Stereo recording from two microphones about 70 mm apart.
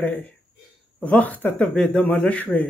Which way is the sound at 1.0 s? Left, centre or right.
Left.